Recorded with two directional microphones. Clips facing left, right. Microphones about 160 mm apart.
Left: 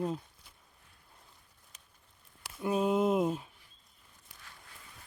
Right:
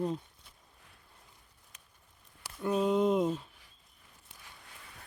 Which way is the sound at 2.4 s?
10° left (ahead or behind).